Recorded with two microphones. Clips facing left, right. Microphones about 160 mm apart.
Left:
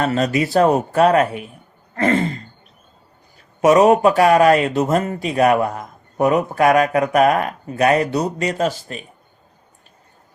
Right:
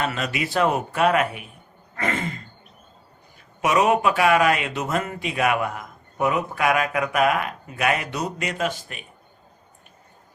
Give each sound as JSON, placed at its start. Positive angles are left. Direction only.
{"t": 0.0, "sound": "speech", "side_deg": 40}
{"t": 3.6, "sound": "speech", "side_deg": 40}